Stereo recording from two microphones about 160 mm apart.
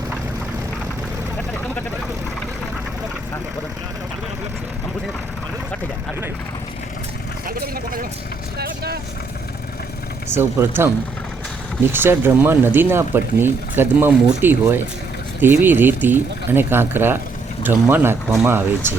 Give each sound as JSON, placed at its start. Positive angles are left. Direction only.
{"t": 8.5, "sound": "vehicle", "side_deg": -80}
{"t": 10.2, "sound": "speech", "side_deg": -15}